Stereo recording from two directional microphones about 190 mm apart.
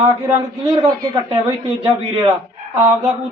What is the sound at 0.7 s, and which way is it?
A man's voice, 20° right (ahead or behind).